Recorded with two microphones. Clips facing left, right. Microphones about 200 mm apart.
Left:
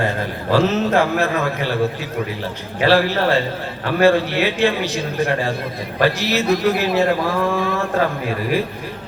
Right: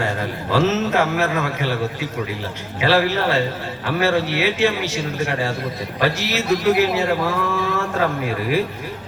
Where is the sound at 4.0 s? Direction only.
15° left (ahead or behind).